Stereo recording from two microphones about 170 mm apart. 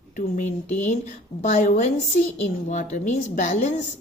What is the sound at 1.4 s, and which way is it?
Speech, 45° left (ahead or behind).